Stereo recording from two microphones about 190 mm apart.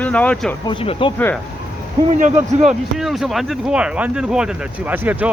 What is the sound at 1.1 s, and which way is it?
Speech, 10° left (ahead or behind).